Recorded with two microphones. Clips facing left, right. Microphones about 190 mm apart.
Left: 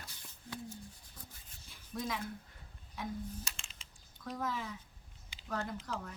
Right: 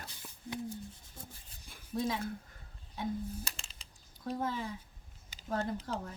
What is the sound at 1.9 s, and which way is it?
Speech, 25° right (ahead or behind).